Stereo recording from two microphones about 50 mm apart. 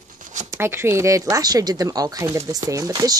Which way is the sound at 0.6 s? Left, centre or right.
Right.